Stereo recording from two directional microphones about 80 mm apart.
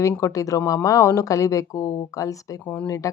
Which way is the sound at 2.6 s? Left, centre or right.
Centre.